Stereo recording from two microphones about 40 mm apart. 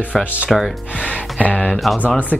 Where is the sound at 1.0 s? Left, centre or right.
Left.